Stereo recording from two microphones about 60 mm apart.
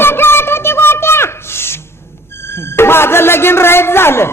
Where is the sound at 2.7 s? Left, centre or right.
Left.